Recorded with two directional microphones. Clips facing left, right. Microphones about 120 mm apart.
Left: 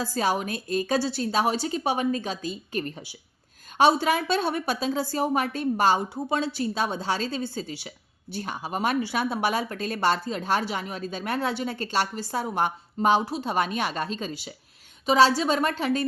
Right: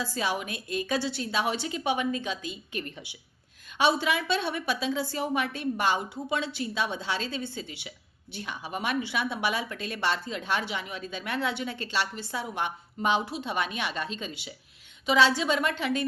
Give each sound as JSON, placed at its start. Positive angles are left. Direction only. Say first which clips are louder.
{"t": 0.0, "sound": "a woman's voice", "louder": "left 5 dB", "side_deg": 40}